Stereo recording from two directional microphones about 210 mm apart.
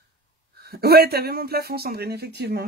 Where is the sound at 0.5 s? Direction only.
50° right (ahead or behind).